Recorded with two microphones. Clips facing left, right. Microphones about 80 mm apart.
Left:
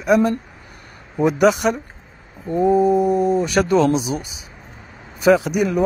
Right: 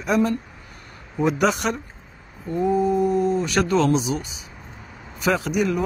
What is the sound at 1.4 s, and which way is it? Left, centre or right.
Speech, centre.